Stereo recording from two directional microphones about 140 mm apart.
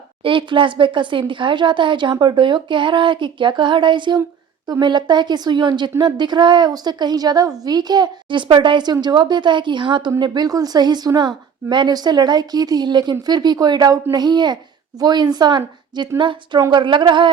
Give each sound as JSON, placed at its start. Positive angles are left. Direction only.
{"t": 0.3, "sound": "a woman's voice", "side_deg": -35}